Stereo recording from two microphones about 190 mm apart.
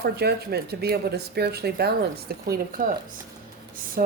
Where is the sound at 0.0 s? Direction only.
60° right (ahead or behind).